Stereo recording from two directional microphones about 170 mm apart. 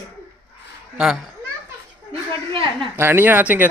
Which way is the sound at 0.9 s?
5° right (ahead or behind).